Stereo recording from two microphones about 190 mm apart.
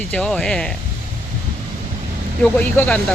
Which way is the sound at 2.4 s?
10° left (ahead or behind).